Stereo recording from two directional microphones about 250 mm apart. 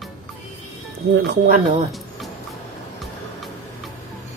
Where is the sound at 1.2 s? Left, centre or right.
Right.